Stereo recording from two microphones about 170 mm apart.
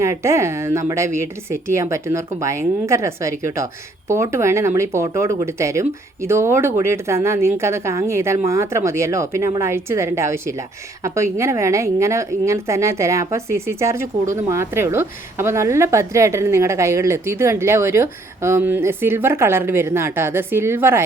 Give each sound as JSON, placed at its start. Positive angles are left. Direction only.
{"t": 0.0, "sound": "speech", "side_deg": -15}